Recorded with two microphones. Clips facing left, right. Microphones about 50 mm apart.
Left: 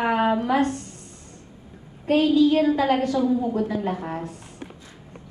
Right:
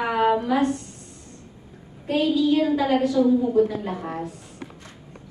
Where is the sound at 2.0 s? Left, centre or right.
Left.